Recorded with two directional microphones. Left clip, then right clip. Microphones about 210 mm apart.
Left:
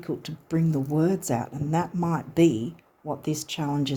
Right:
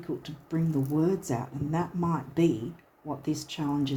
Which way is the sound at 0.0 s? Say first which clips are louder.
Left 3 dB; 50° left (ahead or behind).